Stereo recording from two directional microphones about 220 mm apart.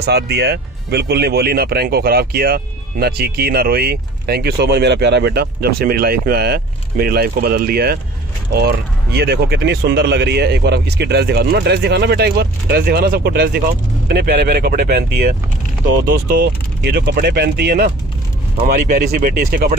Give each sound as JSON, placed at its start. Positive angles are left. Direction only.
{"t": 0.0, "sound": "speech", "side_deg": -50}